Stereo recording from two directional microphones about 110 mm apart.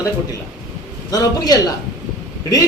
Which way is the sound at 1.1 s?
35° left (ahead or behind).